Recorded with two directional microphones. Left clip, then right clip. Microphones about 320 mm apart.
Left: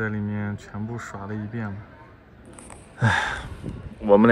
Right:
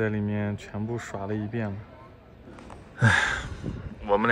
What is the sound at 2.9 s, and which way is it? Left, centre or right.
Gasp, centre.